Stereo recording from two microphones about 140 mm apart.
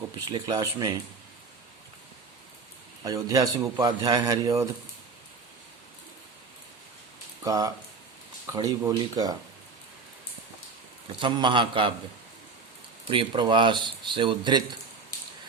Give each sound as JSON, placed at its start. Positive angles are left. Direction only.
{"t": 0.3, "sound": "a man's voice", "side_deg": -30}
{"t": 3.0, "sound": "a man's voice", "side_deg": -25}
{"t": 7.4, "sound": "a man's voice", "side_deg": -25}
{"t": 11.2, "sound": "speech", "side_deg": -35}
{"t": 13.1, "sound": "speech", "side_deg": -35}